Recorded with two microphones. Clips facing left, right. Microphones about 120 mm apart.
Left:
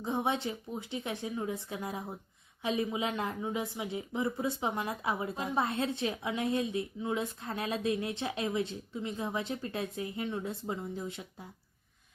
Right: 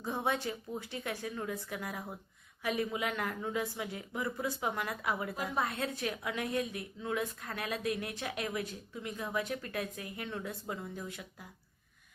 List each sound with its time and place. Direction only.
0.0 s speech: 20° left (ahead or behind)